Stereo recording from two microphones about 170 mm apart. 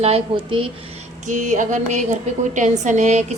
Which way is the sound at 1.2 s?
45° right (ahead or behind).